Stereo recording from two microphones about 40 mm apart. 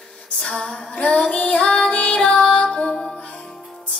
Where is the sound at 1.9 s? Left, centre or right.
Left.